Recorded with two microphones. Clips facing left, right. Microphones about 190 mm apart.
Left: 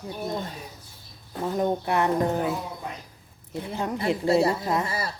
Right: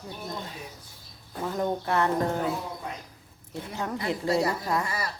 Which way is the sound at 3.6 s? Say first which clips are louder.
Left 4 dB; 20° left (ahead or behind).